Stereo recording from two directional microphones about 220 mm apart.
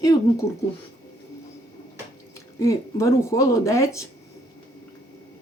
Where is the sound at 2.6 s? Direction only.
15° left (ahead or behind).